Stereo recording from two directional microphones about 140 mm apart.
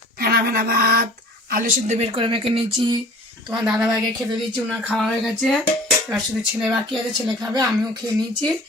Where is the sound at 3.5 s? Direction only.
5° right (ahead or behind).